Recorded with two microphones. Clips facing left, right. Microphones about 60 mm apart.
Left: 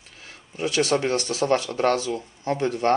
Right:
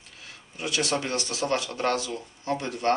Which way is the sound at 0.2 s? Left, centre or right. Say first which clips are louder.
Left 6 dB; left.